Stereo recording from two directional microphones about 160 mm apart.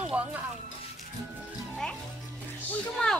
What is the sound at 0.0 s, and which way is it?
Speech, 10° right (ahead or behind).